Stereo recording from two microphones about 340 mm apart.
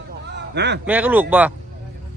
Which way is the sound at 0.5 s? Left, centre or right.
Right.